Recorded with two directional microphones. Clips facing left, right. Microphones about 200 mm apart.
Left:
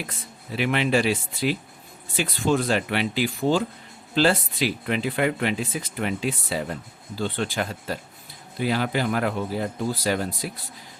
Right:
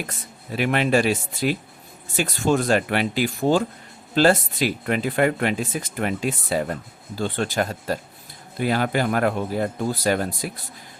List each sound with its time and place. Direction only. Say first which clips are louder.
0.1 s speech: right 2 dB; 45° right (ahead or behind)